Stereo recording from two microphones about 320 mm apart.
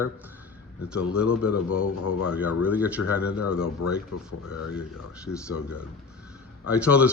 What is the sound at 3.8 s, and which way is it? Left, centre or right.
Speech, left.